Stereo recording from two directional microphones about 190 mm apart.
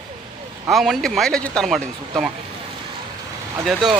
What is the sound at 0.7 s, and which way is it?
Speech, centre (ahead or behind).